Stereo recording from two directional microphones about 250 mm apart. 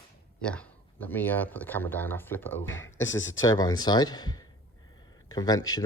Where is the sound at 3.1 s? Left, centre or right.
Left.